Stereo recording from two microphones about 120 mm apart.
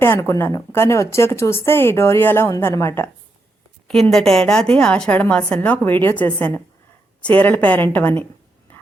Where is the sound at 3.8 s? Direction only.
5° left (ahead or behind).